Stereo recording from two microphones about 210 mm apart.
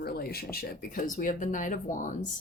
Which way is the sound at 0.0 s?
45° left (ahead or behind).